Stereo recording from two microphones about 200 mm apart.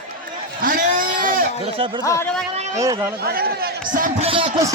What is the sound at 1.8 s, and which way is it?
Speech, 25° right (ahead or behind).